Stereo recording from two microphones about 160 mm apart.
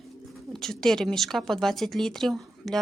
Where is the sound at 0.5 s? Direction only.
5° left (ahead or behind).